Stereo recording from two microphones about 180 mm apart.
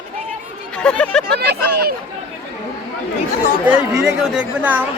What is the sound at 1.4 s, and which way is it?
Speech, 65° right (ahead or behind).